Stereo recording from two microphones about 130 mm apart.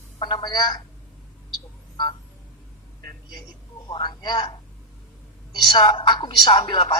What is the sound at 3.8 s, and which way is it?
Speech, 35° left (ahead or behind).